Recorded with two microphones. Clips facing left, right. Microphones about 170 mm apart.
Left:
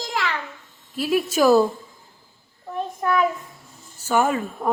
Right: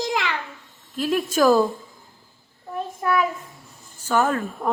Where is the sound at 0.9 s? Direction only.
10° left (ahead or behind).